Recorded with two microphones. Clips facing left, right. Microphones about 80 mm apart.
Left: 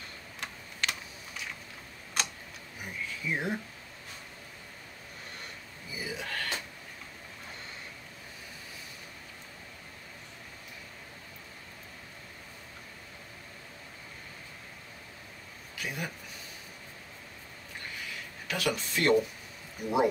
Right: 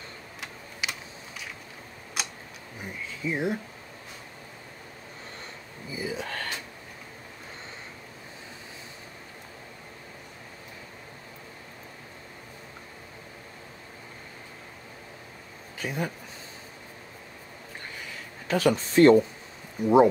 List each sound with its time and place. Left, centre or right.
0.4 s computer keyboard: centre
2.2 s tick-tock: centre
2.8 s a sound: right
5.9 s a sound: right
15.8 s speech: right
18.5 s speech: right